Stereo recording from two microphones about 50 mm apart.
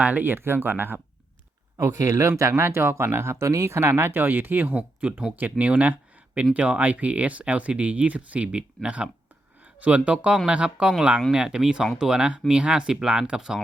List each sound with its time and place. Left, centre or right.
0.0 s speech: right
0.3 s speech: right
1.8 s speech: right; by 13.6 s centre